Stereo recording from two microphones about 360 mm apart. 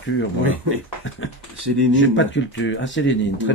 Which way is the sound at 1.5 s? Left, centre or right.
Right.